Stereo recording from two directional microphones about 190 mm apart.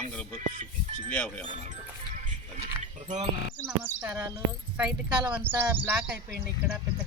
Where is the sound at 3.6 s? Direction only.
10° right (ahead or behind).